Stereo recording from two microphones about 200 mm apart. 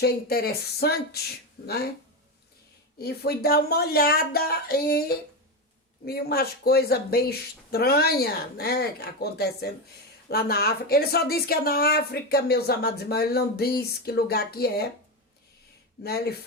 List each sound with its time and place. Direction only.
0.0 s speech: 50° left (ahead or behind)
3.0 s speech: 50° left (ahead or behind)
16.0 s speech: 50° left (ahead or behind)